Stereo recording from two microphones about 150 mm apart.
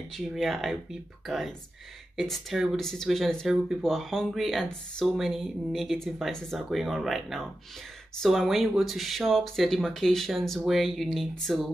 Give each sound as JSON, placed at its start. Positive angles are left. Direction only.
{"t": 0.1, "sound": "speech", "side_deg": 0}